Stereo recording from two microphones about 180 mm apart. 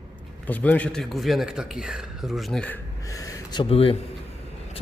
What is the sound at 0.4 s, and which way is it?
A man's voice, 10° left (ahead or behind).